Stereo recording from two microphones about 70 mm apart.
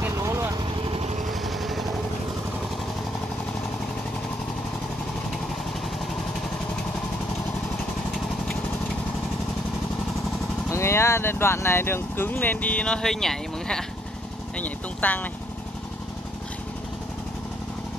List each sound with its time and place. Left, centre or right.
1.4 s vehicle: centre
10.7 s speech: left; by 13.8 s centre
14.6 s speech: left